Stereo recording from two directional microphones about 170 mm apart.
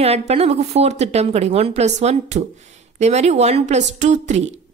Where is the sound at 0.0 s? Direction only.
40° right (ahead or behind).